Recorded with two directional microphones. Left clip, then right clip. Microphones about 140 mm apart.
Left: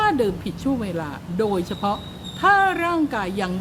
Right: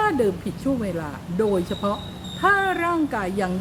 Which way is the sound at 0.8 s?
20° left (ahead or behind).